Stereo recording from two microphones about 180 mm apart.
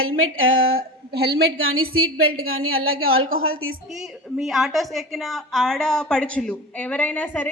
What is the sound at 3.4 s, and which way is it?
Speech, 90° right.